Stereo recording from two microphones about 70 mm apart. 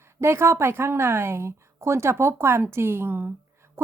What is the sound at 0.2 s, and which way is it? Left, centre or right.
A woman's voice, right.